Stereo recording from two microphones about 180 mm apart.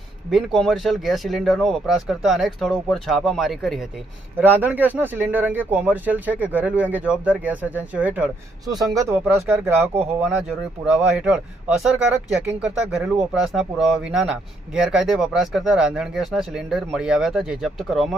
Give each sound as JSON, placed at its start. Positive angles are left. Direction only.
{"t": 0.3, "sound": "speech", "side_deg": 0}
{"t": 8.7, "sound": "speech", "side_deg": -20}